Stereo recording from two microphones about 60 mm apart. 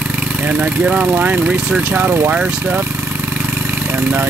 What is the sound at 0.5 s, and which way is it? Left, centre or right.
Speech, right.